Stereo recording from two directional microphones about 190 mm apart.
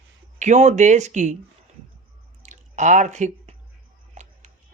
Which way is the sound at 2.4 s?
40° right (ahead or behind).